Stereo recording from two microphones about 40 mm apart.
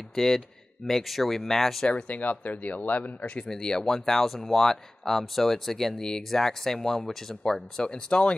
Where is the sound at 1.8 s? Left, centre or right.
Left.